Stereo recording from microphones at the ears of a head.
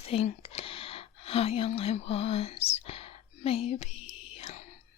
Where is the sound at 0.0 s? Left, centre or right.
Left.